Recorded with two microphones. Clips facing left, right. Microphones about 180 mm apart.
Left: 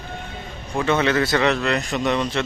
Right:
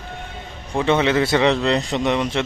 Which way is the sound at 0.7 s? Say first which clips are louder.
Right 2 dB; 20° right (ahead or behind).